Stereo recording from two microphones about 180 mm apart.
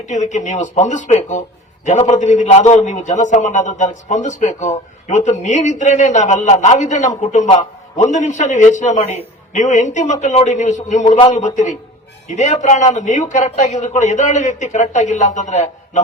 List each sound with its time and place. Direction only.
0.0 s a man's voice: 40° left (ahead or behind)